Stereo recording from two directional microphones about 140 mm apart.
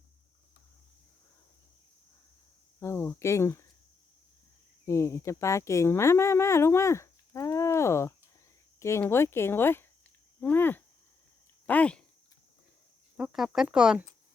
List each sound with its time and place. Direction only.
2.8 s speech: 15° left (ahead or behind)
4.9 s speech: 20° left (ahead or behind)
13.1 s speech: 5° right (ahead or behind)